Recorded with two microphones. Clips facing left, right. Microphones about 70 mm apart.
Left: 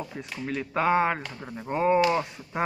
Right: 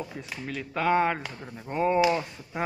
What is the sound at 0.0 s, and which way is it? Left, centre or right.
Speech, centre.